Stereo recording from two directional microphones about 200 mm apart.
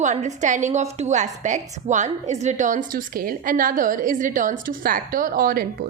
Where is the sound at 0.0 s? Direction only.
35° right (ahead or behind).